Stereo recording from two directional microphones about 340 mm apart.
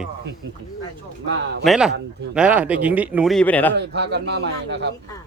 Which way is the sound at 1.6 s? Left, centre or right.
Centre.